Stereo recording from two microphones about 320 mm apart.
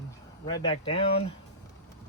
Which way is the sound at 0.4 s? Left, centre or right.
Centre.